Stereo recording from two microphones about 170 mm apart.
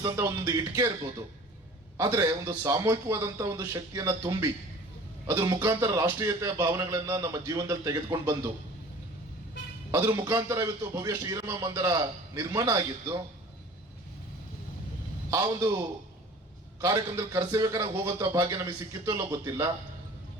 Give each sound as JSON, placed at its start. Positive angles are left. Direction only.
{"t": 0.0, "sound": "speech", "side_deg": -20}
{"t": 2.0, "sound": "speech", "side_deg": -20}
{"t": 9.9, "sound": "speech", "side_deg": -20}
{"t": 15.3, "sound": "speech", "side_deg": -25}
{"t": 16.8, "sound": "speech", "side_deg": -20}